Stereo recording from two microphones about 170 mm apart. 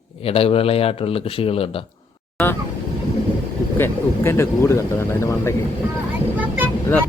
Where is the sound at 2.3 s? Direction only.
10° left (ahead or behind).